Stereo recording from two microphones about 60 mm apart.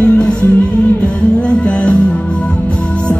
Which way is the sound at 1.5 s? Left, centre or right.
Centre.